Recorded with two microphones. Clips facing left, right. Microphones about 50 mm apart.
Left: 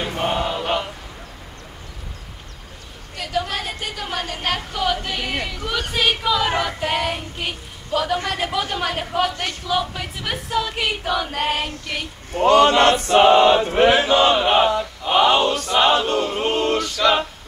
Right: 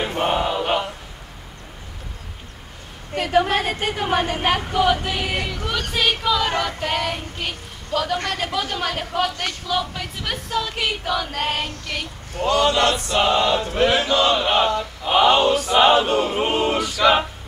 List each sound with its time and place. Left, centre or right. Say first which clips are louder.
0.0 s chant: right 1 dB; centre
3.2 s a woman's voice: right 6 dB; right; by 5.9 s centre
5.9 s child singing: left 1 dB; centre
12.3 s chant: left 5 dB; left
14.4 s chant: left 2 dB; centre